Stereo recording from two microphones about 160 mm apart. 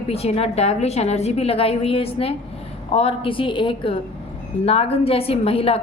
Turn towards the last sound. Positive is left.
turn(degrees=35)  # may be behind; listen again after turning